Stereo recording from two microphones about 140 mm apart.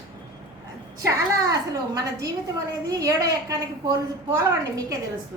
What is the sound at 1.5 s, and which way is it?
A woman's voice, 25° right (ahead or behind).